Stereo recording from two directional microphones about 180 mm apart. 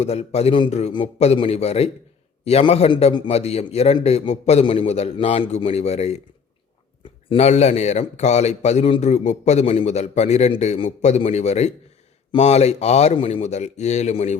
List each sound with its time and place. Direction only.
0.0 s speech: 35° left (ahead or behind)
7.3 s speech: 35° left (ahead or behind)